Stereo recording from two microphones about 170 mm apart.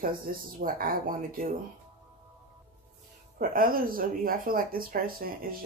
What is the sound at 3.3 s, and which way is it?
Speech, 55° right (ahead or behind).